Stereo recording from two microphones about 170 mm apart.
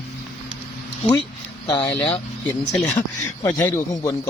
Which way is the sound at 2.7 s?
10° left (ahead or behind).